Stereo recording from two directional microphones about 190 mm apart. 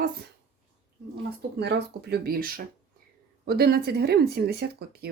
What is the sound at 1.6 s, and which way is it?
Speech, 60° right (ahead or behind).